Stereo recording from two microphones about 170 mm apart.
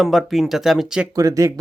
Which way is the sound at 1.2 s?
20° right (ahead or behind).